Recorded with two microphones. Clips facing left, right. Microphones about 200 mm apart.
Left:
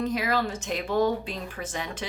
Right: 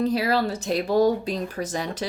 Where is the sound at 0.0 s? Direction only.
35° right (ahead or behind).